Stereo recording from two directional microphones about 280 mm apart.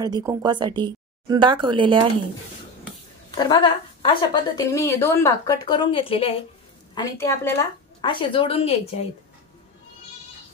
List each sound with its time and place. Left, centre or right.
0.0 s speech: centre
3.3 s a woman's voice: centre